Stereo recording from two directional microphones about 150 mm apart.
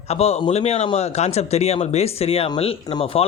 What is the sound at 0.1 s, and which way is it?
Speech, 45° left (ahead or behind).